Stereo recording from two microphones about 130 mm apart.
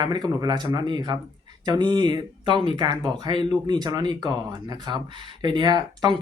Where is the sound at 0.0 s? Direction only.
35° right (ahead or behind).